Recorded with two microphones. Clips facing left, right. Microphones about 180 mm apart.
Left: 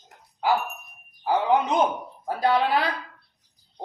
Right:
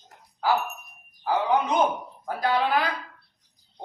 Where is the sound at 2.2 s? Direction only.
30° left (ahead or behind).